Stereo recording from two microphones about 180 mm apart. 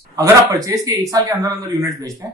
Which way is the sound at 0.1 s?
20° right (ahead or behind).